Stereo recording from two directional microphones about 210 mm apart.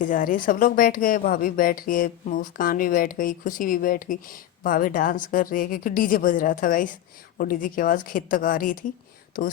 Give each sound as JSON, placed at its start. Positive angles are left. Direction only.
{"t": 0.0, "sound": "a woman's voice", "side_deg": 40}